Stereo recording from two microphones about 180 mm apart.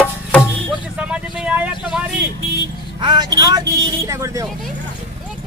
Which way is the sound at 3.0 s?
25° right (ahead or behind).